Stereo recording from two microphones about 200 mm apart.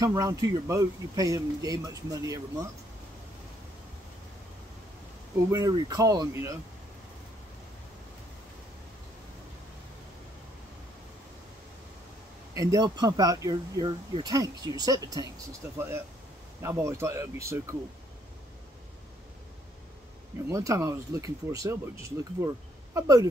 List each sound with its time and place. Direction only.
0.0 s speech: 15° right (ahead or behind)
5.5 s speech: 15° right (ahead or behind)
12.5 s speech: 20° right (ahead or behind)
20.4 s speech: 15° right (ahead or behind)